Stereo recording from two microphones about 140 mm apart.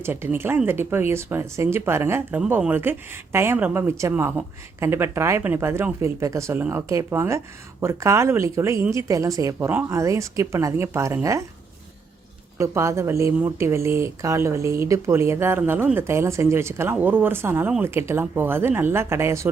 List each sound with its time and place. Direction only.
0.0 s speech: 15° right (ahead or behind)
12.5 s speech: 20° right (ahead or behind)